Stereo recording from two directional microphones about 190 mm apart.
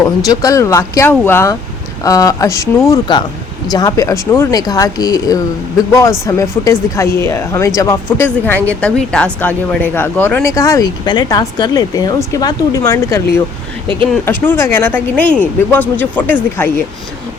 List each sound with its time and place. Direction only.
0.0 s speech: 20° left (ahead or behind)